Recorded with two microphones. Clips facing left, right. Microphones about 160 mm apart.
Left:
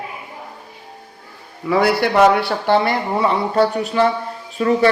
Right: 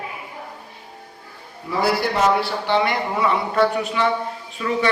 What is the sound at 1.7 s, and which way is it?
A man's voice, 65° left (ahead or behind).